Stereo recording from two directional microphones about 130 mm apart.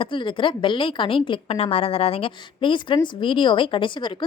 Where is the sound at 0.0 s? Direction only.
40° left (ahead or behind).